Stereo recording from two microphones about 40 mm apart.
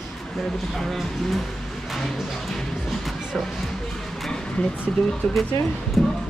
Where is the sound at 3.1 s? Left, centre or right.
Centre.